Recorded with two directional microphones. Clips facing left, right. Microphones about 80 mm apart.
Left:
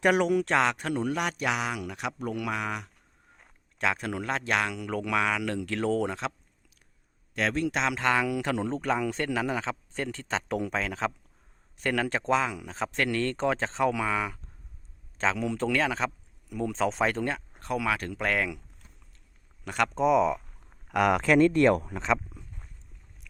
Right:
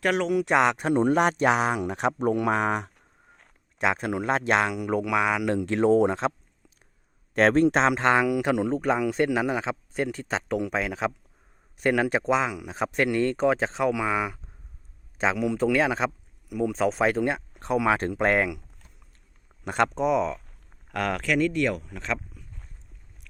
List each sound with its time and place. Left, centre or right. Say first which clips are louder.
0.0 s speech: left 1 dB; centre
0.5 s a man's voice: right 4 dB; right
3.8 s speech: right 4 dB; right
7.3 s a man's voice: right 8 dB; right
8.3 s a man's voice: right 5 dB; centre
19.6 s speech: right 4 dB; right
19.9 s speech: left 1 dB; centre
20.9 s speech: left 4 dB; centre
21.3 s speech: left 4 dB; left
21.9 s a sound: left 4 dB; left